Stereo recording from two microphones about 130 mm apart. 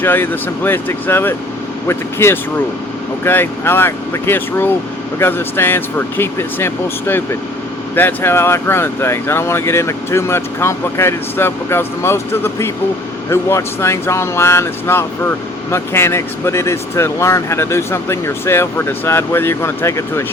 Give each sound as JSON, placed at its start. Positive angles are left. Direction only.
{"t": 0.0, "sound": "speech", "side_deg": 15}